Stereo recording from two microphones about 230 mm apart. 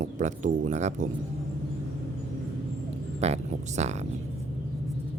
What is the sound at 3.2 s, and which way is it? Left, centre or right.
Speech, right.